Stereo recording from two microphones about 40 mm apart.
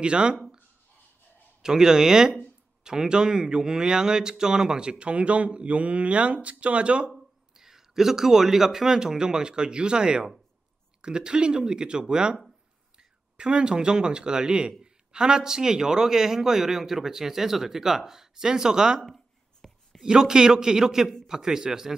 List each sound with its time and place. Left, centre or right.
0.0 s a man's voice: right
1.6 s a man's voice: centre
7.5 s a man's voice: centre
13.4 s a man's voice: right
19.0 s a sound: centre
20.0 s a man's voice: centre